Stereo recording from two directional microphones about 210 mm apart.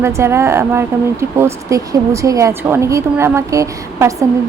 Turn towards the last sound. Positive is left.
turn(degrees=-15)  # may be behind; listen again after turning